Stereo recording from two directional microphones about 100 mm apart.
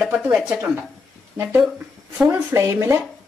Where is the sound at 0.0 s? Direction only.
15° right (ahead or behind).